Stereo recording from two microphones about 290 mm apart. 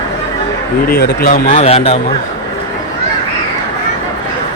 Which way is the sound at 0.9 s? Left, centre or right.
Left.